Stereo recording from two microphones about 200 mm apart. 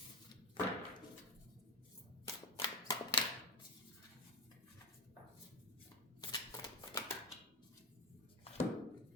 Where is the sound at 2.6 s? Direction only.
20° left (ahead or behind).